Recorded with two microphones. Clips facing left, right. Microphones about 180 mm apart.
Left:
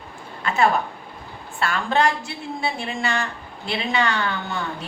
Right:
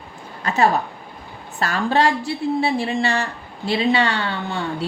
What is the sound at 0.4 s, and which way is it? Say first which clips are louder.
A woman's voice: right 2 dB; 40° right (ahead or behind).